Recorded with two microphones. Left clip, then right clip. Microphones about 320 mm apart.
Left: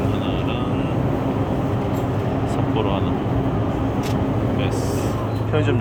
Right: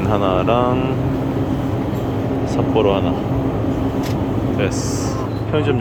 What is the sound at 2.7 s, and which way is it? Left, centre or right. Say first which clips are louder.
Speech: right 9 dB; centre.